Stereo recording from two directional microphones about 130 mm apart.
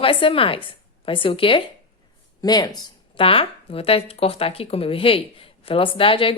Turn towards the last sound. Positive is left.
turn(degrees=45)  # may be behind; listen again after turning